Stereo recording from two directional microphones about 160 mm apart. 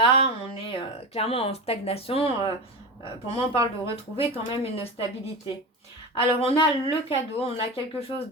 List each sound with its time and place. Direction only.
0.0 s speech: 35° left (ahead or behind)